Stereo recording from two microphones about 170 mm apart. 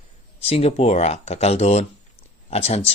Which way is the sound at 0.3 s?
35° left (ahead or behind).